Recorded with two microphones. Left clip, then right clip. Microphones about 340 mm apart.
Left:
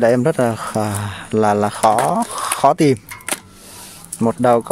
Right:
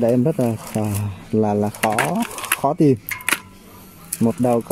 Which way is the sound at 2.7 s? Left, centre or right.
Left.